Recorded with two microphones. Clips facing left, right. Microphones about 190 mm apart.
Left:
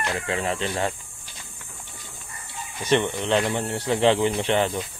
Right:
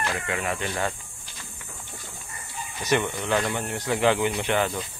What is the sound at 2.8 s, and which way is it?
Speech, 25° left (ahead or behind).